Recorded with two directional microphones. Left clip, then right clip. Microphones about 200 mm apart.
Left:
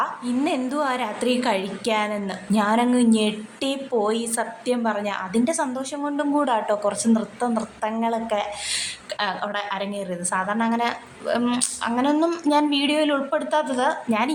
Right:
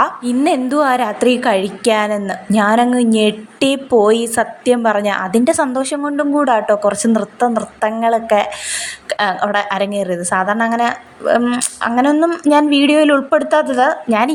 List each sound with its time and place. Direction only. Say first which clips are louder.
0.0 s a woman's voice: right 9 dB; 25° right (ahead or behind)
6.0 s a woman's voice: right 4 dB; 20° right (ahead or behind)
12.1 s a woman's voice: right 7 dB; 15° right (ahead or behind)
12.5 s a woman's voice: right 10 dB; 25° right (ahead or behind)